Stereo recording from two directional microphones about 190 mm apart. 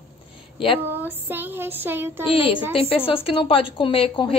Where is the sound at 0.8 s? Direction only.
10° right (ahead or behind).